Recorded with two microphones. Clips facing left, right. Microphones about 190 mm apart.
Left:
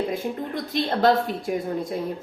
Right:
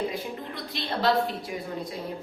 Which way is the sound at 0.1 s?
45° left (ahead or behind).